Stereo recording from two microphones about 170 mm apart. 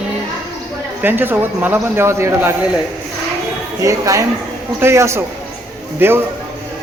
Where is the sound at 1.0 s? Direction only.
10° right (ahead or behind).